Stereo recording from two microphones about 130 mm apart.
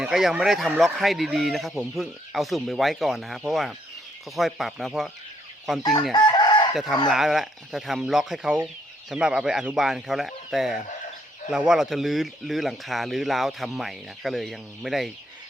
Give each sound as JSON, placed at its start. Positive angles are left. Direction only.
{"t": 0.0, "sound": "speech", "side_deg": 0}
{"t": 6.1, "sound": "chicken", "side_deg": 35}
{"t": 6.7, "sound": "speech", "side_deg": 0}